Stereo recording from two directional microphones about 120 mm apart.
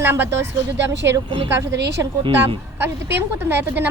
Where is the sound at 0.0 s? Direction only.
20° right (ahead or behind).